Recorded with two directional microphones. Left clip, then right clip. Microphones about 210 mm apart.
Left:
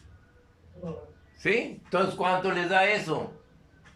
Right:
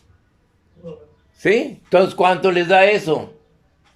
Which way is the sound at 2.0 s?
50° right (ahead or behind).